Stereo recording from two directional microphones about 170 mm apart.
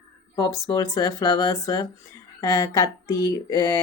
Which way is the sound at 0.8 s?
20° left (ahead or behind).